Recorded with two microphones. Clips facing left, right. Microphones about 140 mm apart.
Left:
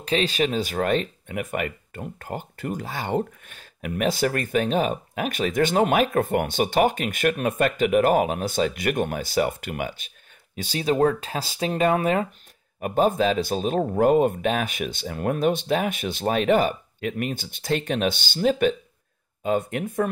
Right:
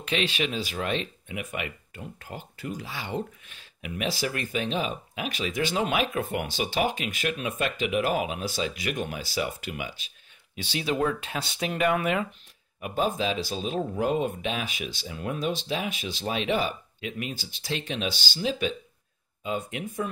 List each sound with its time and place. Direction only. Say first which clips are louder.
0.0 s speech: left 5 dB; 40° left (ahead or behind)
12.8 s speech: left 6 dB; 45° left (ahead or behind)